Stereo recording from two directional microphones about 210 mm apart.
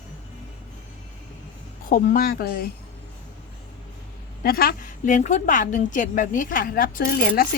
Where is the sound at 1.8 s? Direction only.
45° left (ahead or behind).